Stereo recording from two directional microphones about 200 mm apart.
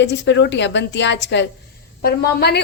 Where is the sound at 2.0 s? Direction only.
50° left (ahead or behind).